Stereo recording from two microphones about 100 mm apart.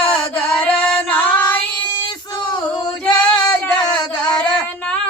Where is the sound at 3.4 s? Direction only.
50° left (ahead or behind).